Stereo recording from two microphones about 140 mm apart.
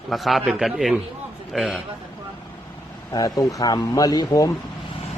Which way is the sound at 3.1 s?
25° left (ahead or behind).